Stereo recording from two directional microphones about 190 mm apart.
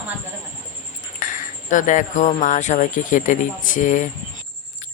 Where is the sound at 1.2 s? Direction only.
45° left (ahead or behind).